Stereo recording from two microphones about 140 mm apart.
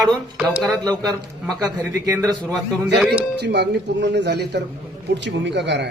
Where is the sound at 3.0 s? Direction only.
5° right (ahead or behind).